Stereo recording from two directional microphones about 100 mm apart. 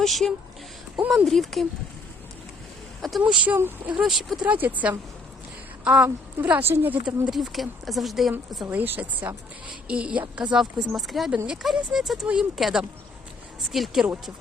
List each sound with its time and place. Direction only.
0.0 s speech: centre (ahead or behind)
3.0 s a woman's voice: 5° right (ahead or behind)
4.0 s speech: centre (ahead or behind)
4.4 s a woman's voice: 15° right (ahead or behind)
7.3 s speech: centre (ahead or behind)
8.6 s a woman's voice: 20° right (ahead or behind); by 14.1 s 5° right (ahead or behind)